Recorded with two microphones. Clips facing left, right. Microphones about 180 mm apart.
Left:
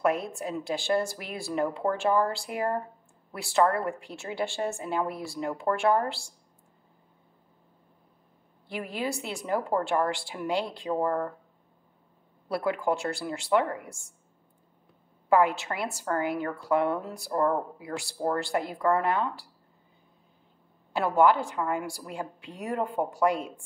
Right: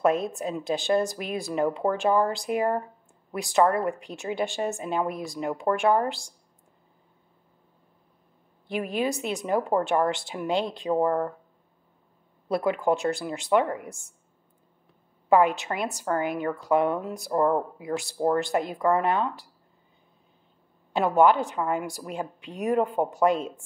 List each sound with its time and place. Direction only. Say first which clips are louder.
0.0 s a woman's voice: right 3 dB; 20° right (ahead or behind)
8.6 s a woman's voice: right 5 dB; 20° right (ahead or behind)
12.4 s a woman's voice: right 3 dB; 20° right (ahead or behind)
15.2 s a woman's voice: right 2 dB; 20° right (ahead or behind)
20.9 s a woman's voice: right 2 dB; 20° right (ahead or behind)